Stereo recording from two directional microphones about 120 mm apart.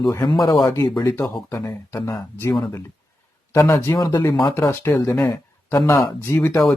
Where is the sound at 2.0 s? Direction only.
35° left (ahead or behind).